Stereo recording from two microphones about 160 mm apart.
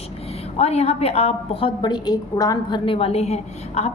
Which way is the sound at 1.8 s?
25° left (ahead or behind).